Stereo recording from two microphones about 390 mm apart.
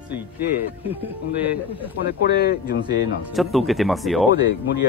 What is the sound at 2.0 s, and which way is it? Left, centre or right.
Speech, left.